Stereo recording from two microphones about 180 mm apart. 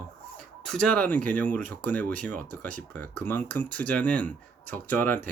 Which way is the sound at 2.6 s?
45° right (ahead or behind).